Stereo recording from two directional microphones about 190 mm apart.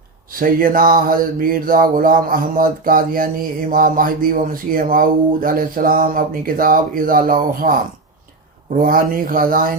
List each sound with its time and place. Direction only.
0.3 s speech: 45° right (ahead or behind)
8.8 s speech: 50° right (ahead or behind)